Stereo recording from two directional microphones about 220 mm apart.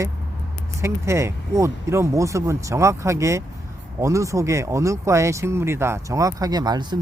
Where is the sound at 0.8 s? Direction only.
10° right (ahead or behind).